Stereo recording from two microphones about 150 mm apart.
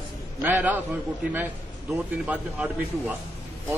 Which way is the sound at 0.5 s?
10° right (ahead or behind).